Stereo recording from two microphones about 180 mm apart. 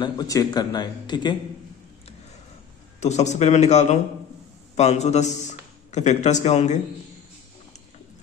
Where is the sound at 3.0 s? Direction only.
40° left (ahead or behind).